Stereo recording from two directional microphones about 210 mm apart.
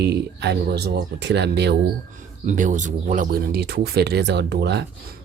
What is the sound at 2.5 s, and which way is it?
Speech, 35° right (ahead or behind).